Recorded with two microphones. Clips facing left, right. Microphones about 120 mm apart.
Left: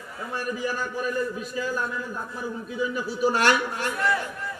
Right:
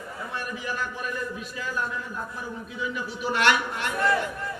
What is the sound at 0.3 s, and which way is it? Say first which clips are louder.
A man's voice: left 4 dB; 40° left (ahead or behind).